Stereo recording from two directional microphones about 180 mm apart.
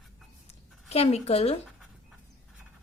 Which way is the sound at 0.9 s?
35° left (ahead or behind).